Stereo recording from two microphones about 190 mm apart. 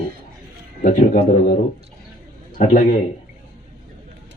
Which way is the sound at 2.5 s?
40° left (ahead or behind).